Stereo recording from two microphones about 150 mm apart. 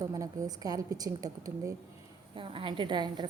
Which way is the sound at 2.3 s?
35° right (ahead or behind).